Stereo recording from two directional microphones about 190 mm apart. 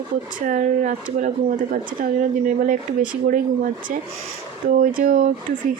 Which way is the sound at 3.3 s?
45° right (ahead or behind).